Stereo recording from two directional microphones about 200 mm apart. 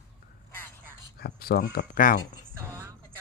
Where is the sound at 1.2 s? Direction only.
50° left (ahead or behind).